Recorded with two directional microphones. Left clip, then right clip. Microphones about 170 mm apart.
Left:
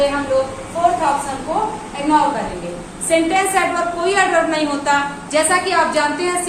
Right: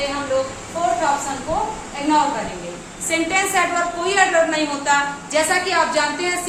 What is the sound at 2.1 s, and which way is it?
A woman's voice, 15° right (ahead or behind).